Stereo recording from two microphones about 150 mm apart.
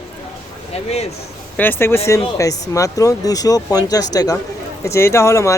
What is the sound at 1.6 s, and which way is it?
Speech, 15° left (ahead or behind).